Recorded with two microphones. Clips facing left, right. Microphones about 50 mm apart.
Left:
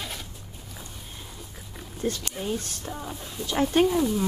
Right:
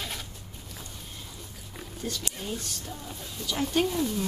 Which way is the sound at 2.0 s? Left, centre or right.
Left.